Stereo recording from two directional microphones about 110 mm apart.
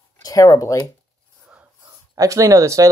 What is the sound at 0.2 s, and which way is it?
Speech, 30° left (ahead or behind).